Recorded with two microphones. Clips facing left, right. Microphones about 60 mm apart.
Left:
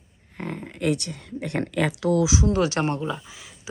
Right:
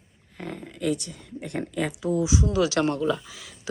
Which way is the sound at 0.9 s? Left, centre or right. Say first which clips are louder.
Left 5 dB; left.